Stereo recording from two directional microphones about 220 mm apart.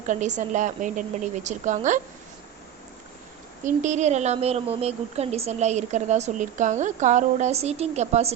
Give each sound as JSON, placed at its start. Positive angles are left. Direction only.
{"t": 0.1, "sound": "a woman's voice", "side_deg": -35}
{"t": 3.6, "sound": "a woman's voice", "side_deg": -35}